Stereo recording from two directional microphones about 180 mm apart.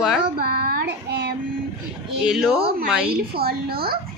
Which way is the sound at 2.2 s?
5° right (ahead or behind).